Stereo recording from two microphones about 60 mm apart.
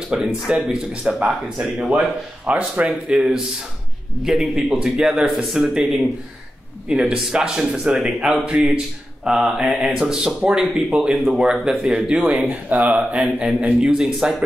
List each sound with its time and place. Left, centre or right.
0.3 s speech: centre
2.4 s speech: right; by 5.6 s centre
5.6 s speech: centre
12.4 s speech: right; by 14.3 s centre